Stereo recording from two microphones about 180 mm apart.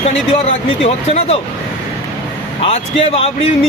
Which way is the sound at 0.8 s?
35° left (ahead or behind).